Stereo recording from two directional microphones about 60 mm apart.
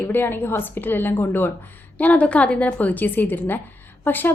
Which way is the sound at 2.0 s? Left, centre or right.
Left.